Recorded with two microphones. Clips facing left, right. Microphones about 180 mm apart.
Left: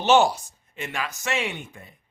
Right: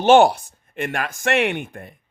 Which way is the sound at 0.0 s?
55° right (ahead or behind).